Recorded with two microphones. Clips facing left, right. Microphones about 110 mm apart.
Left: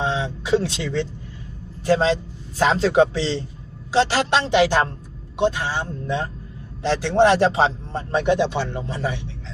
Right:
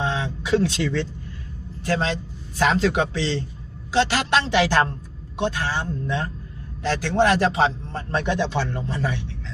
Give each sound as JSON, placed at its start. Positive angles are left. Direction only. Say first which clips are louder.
{"t": 0.0, "sound": "a sound", "louder": "left 2 dB", "side_deg": 20}
{"t": 1.8, "sound": "a man's voice", "louder": "left 6 dB", "side_deg": 30}
{"t": 4.5, "sound": "a man's voice", "louder": "left 4 dB", "side_deg": 10}
{"t": 8.1, "sound": "speech", "louder": "left 4 dB", "side_deg": 15}